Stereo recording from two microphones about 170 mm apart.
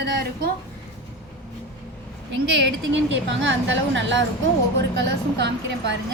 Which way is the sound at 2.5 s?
90° right.